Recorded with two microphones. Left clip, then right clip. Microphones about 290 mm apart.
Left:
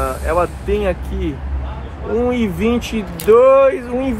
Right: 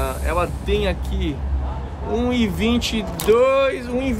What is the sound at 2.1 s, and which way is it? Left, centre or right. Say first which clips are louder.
Speech: left 4 dB; centre.